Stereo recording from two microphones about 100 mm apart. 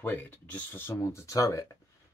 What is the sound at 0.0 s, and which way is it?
Speech, 20° left (ahead or behind).